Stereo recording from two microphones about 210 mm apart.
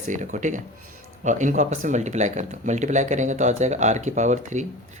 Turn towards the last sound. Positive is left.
turn(degrees=-35)  # may be behind; listen again after turning